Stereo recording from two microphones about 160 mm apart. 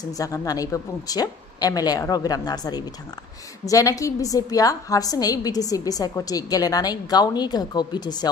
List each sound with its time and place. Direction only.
0.0 s a woman's voice: 20° left (ahead or behind)